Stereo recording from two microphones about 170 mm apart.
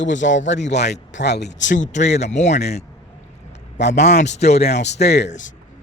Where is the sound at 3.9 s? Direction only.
45° left (ahead or behind).